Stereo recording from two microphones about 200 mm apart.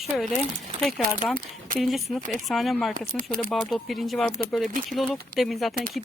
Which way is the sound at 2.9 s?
45° right (ahead or behind).